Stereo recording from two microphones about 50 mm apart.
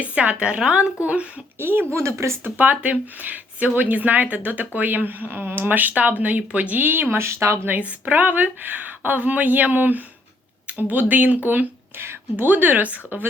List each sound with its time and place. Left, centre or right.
0.0 s a woman's voice: right
1.5 s speech: right
2.0 s speech: right
2.4 s speech: right
7.2 s speech: right
7.8 s speech: right
11.9 s speech: right